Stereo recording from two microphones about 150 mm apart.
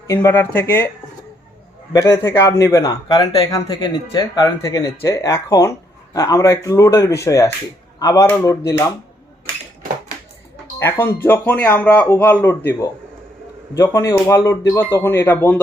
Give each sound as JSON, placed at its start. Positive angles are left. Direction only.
{"t": 0.1, "sound": "speech", "side_deg": 20}
{"t": 1.9, "sound": "speech", "side_deg": 20}
{"t": 10.8, "sound": "speech", "side_deg": 15}